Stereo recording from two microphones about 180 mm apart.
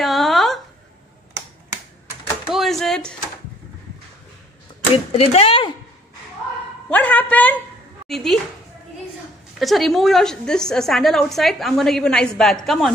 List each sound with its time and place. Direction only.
0.0 s a sound: centre (ahead or behind)
2.4 s speech: centre (ahead or behind)
4.9 s speech: 35° left (ahead or behind)
6.9 s a man's voice: 10° left (ahead or behind)
9.6 s a woman's voice: centre (ahead or behind)